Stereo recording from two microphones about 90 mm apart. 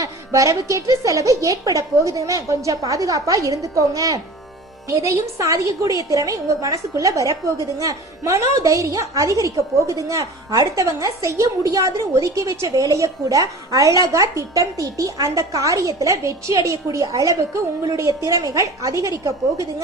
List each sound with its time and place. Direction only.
0.0 s a woman's voice: 40° right (ahead or behind)